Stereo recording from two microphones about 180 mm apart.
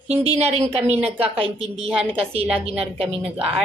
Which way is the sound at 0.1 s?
35° right (ahead or behind).